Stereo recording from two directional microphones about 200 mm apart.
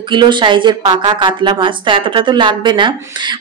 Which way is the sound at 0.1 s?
25° right (ahead or behind).